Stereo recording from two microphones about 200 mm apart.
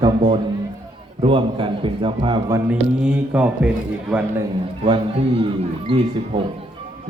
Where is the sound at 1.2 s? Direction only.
25° right (ahead or behind).